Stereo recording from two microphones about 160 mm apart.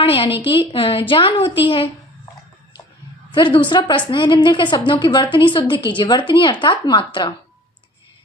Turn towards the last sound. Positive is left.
turn(degrees=30)  # may be behind; listen again after turning